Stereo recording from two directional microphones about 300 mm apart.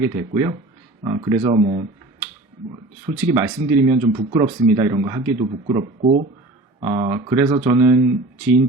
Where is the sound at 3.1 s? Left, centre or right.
Centre.